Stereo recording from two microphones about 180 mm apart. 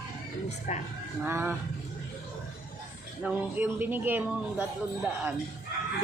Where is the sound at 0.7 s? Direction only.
40° left (ahead or behind).